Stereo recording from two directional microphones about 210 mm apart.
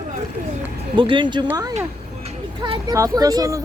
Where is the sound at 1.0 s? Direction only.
25° right (ahead or behind).